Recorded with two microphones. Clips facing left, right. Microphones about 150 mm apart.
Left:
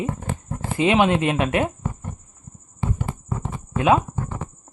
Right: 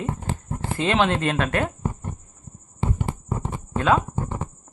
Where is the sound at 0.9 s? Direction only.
10° left (ahead or behind).